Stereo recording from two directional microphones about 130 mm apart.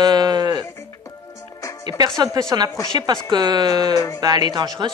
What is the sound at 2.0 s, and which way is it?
Speech, 30° right (ahead or behind).